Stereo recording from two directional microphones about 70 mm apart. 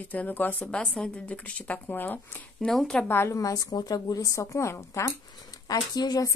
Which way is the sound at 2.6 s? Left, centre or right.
Centre.